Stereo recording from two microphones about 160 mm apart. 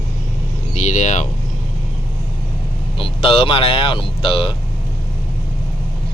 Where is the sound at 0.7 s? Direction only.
45° left (ahead or behind).